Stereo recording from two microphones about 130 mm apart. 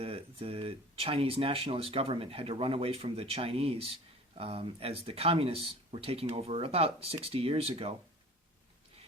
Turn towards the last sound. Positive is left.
turn(degrees=-50)  # may be behind; listen again after turning